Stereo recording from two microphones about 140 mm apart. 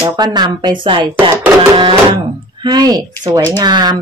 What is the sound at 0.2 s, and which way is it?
Speech, 30° right (ahead or behind).